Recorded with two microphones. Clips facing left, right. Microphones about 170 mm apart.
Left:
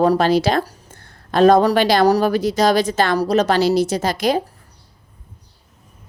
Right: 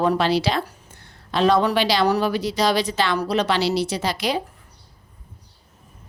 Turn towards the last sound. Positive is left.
turn(degrees=45)  # may be behind; listen again after turning